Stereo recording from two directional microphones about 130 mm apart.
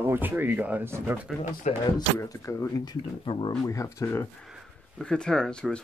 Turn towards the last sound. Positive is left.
turn(degrees=5)  # may be behind; listen again after turning